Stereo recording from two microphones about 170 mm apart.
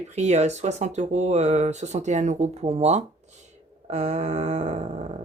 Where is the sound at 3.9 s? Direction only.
40° right (ahead or behind).